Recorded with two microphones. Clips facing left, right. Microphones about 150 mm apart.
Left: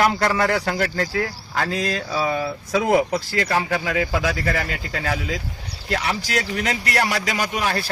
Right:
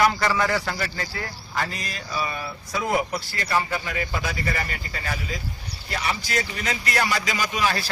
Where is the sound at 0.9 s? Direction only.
90° left.